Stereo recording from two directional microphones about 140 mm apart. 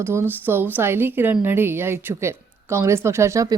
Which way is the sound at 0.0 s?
20° right (ahead or behind).